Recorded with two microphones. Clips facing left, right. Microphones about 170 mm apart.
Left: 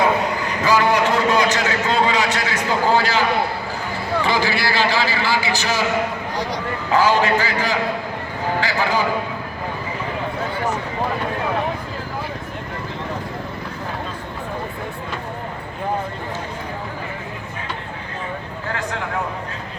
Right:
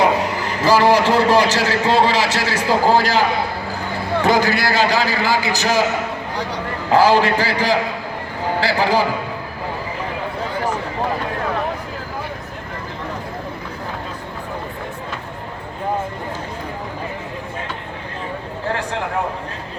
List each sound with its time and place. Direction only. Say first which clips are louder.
0.7 s a man's voice: right 4 dB; 30° right (ahead or behind)
6.9 s a man's voice: right 3 dB; 35° right (ahead or behind)